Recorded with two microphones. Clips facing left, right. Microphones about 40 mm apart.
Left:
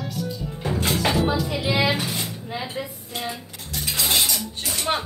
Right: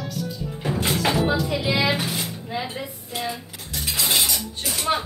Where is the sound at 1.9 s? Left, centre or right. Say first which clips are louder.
Right 1 dB; centre.